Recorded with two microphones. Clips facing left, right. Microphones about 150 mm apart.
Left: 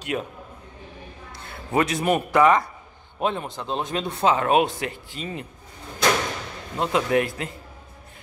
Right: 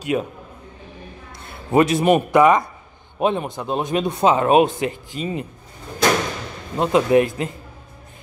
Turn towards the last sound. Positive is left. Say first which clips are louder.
# right 6 dB
turn(degrees=-20)  # may be behind; listen again after turning